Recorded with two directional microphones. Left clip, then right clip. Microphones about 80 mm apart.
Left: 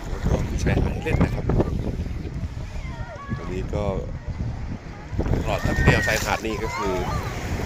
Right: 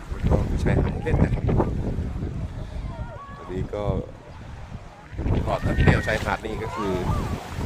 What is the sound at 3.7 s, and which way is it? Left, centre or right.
Speech, right.